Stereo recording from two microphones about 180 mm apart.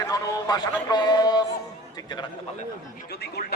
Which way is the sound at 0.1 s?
20° left (ahead or behind).